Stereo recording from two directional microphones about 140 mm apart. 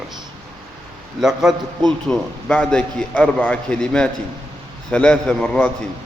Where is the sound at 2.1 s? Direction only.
5° left (ahead or behind).